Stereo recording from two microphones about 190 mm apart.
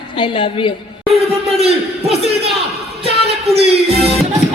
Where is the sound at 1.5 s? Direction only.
35° right (ahead or behind).